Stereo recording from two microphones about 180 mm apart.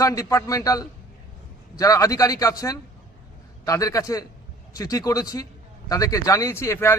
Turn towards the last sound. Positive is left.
turn(degrees=15)  # may be behind; listen again after turning